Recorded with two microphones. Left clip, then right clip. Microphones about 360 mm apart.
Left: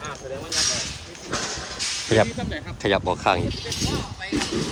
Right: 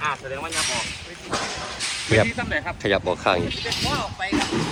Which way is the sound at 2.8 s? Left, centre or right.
Centre.